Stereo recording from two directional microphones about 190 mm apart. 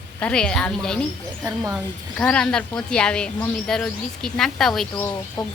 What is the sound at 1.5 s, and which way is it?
Speech, 15° right (ahead or behind).